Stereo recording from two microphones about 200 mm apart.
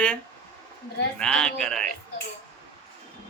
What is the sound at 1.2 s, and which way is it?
Speech, 5° left (ahead or behind).